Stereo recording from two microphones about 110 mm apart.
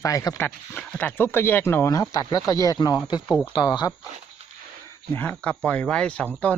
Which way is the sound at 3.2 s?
10° left (ahead or behind).